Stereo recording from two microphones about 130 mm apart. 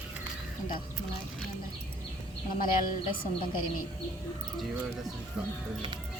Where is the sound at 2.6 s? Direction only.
90° left.